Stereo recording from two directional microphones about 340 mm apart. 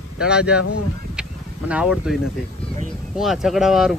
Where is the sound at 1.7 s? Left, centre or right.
Centre.